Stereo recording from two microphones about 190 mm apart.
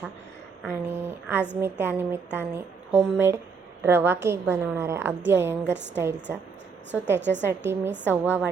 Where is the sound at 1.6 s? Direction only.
10° right (ahead or behind).